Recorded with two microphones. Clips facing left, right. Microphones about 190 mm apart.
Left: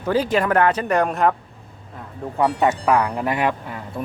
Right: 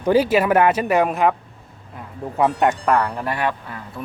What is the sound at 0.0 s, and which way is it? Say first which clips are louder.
Speech: right 3 dB; 10° right (ahead or behind).